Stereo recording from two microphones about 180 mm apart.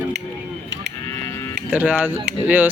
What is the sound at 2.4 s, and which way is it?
Speech, 10° right (ahead or behind).